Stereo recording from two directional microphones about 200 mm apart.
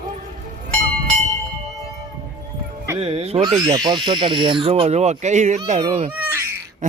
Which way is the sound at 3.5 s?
20° right (ahead or behind).